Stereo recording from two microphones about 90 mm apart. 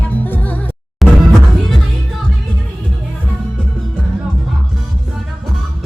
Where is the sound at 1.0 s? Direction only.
Centre (ahead or behind).